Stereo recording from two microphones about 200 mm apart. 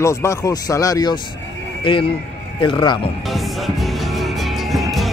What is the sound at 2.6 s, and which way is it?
Speech, 20° left (ahead or behind).